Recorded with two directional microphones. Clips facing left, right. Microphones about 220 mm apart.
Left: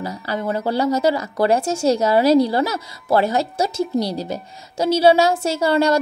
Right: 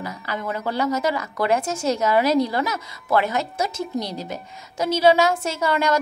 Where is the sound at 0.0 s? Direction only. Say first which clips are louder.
Left 5 dB; 35° left (ahead or behind).